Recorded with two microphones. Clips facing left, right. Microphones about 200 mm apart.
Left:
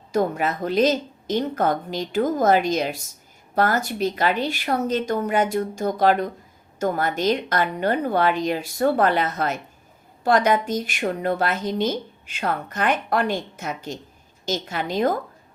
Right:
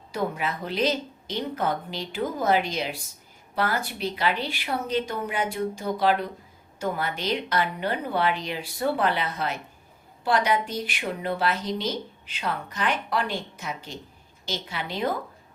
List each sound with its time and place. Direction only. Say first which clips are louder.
0.1 s a woman's voice: left 6 dB; 45° left (ahead or behind)